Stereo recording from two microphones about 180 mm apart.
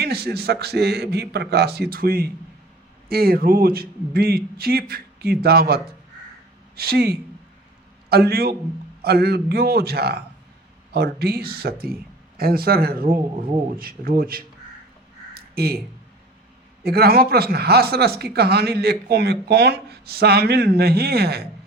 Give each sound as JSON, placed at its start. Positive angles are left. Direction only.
{"t": 0.0, "sound": "speech", "side_deg": -60}
{"t": 15.4, "sound": "a sound", "side_deg": -60}
{"t": 16.8, "sound": "speech", "side_deg": -60}